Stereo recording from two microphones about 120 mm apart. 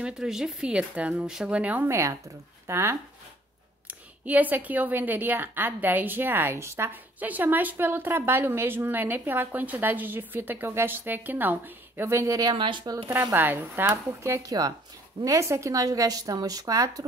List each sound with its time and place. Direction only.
0.0 s a woman's voice: 5° right (ahead or behind); by 12.5 s 30° right (ahead or behind)
12.5 s speech: 45° right (ahead or behind)
13.1 s a woman's voice: 20° right (ahead or behind)